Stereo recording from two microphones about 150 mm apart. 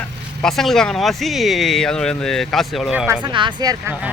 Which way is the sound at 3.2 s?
30° right (ahead or behind).